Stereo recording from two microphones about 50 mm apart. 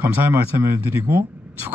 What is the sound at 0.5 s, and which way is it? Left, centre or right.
Speech, right.